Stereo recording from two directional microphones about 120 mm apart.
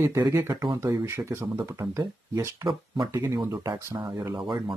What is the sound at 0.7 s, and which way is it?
Speech, 25° right (ahead or behind).